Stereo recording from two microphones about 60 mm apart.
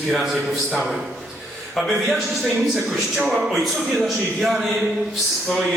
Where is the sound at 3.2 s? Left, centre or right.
Centre.